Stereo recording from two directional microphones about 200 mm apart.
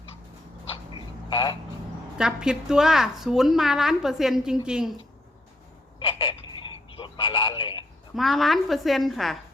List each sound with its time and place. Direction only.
1.3 s speech: 25° left (ahead or behind)
2.1 s a woman's voice: 5° right (ahead or behind)
6.0 s telephone: 25° left (ahead or behind)
8.1 s a woman's voice: centre (ahead or behind)